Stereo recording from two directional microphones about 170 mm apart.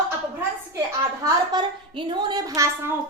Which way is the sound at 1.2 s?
25° right (ahead or behind).